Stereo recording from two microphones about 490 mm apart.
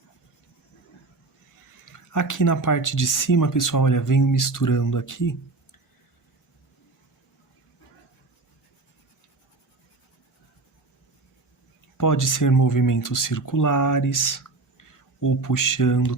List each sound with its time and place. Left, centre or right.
1.8 s speech: left
11.9 s speech: left